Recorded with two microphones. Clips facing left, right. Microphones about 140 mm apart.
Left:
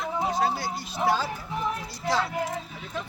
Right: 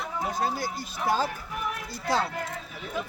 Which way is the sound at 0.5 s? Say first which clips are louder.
Even; 45° right (ahead or behind).